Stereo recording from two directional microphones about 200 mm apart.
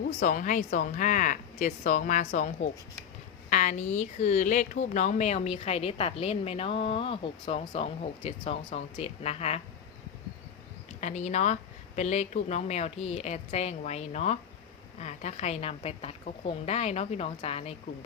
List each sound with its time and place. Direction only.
0.2 s speech: 40° left (ahead or behind)
11.0 s speech: 35° left (ahead or behind)